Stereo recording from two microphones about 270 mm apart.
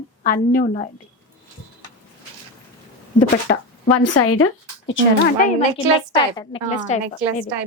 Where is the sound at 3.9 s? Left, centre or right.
Left.